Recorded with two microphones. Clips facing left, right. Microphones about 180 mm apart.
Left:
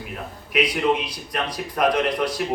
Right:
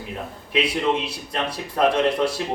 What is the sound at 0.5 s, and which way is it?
A man's voice, 25° right (ahead or behind).